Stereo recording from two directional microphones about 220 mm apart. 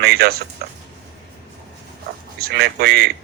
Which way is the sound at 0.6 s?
45° right (ahead or behind).